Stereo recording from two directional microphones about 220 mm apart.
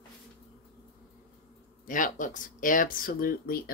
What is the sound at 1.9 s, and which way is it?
Speech, 35° left (ahead or behind).